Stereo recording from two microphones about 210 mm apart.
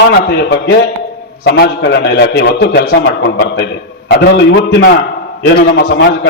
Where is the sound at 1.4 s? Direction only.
50° left (ahead or behind).